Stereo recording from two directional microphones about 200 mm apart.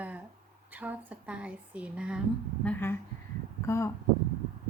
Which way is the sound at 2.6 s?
10° left (ahead or behind).